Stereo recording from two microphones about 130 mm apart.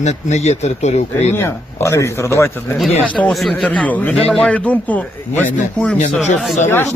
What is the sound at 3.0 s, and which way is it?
A man's voice, 10° left (ahead or behind).